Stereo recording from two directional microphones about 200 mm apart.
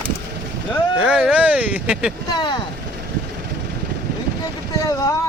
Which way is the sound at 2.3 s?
20° left (ahead or behind).